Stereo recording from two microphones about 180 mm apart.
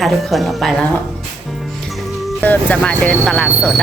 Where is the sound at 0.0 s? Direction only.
Centre (ahead or behind).